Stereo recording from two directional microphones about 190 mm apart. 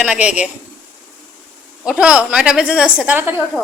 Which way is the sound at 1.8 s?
5° right (ahead or behind).